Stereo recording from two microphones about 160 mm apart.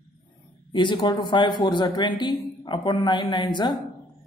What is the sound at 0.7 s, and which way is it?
A man's voice, 30° left (ahead or behind).